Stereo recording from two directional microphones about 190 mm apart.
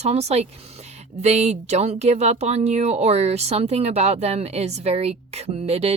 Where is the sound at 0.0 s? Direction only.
35° right (ahead or behind).